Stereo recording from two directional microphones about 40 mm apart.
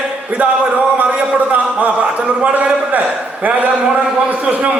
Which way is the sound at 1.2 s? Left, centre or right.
Right.